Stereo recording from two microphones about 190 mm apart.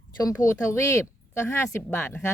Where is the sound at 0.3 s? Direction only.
15° left (ahead or behind).